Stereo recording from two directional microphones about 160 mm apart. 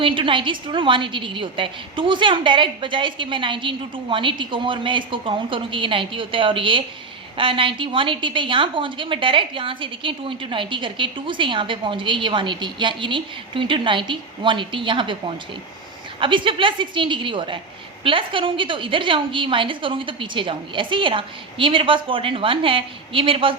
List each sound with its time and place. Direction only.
0.0 s a woman's voice: 30° right (ahead or behind)
16.2 s a woman's voice: 30° right (ahead or behind)